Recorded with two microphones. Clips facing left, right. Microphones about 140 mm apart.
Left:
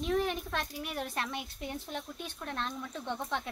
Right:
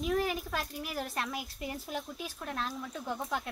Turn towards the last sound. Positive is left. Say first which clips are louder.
# even
turn(degrees=-5)  # may be behind; listen again after turning